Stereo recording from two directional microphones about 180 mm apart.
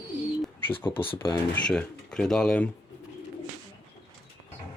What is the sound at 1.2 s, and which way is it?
Speech, 15° left (ahead or behind).